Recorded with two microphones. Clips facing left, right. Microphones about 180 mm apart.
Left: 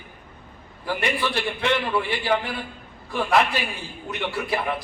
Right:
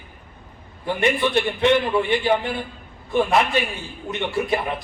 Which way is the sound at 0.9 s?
20° right (ahead or behind).